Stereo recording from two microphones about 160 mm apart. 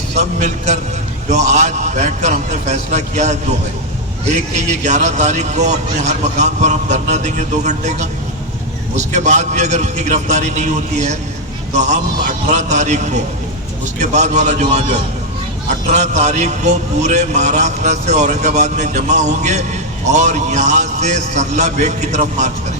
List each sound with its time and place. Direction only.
0.1 s a man's voice: 45° right (ahead or behind)
4.5 s a man's voice: 45° right (ahead or behind)